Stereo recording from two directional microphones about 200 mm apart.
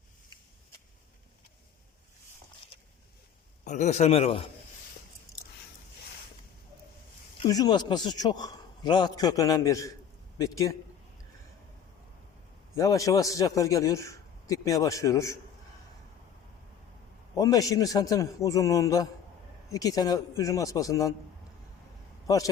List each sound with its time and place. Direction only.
3.6 s a man's voice: 35° left (ahead or behind)
7.4 s a man's voice: 20° left (ahead or behind)
12.7 s a man's voice: 15° left (ahead or behind)
17.3 s a man's voice: 20° left (ahead or behind)